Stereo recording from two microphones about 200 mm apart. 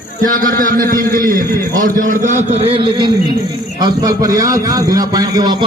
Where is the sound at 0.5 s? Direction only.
45° right (ahead or behind).